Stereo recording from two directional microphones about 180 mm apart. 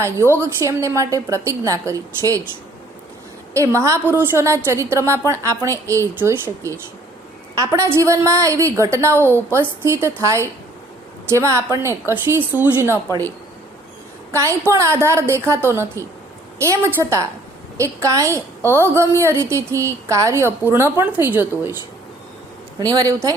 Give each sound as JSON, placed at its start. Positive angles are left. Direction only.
{"t": 0.2, "sound": "a woman's voice", "side_deg": 15}
{"t": 0.6, "sound": "a woman's voice", "side_deg": -15}
{"t": 3.5, "sound": "a woman's voice", "side_deg": -15}
{"t": 14.3, "sound": "a woman's voice", "side_deg": -15}
{"t": 22.8, "sound": "a woman's voice", "side_deg": -20}